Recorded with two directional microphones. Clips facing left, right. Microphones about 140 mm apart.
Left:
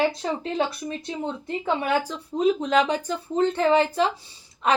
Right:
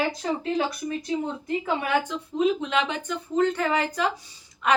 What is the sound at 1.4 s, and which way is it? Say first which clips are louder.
A woman's voice: left 1 dB; 35° left (ahead or behind).